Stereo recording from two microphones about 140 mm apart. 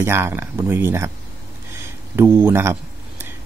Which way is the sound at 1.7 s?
15° right (ahead or behind).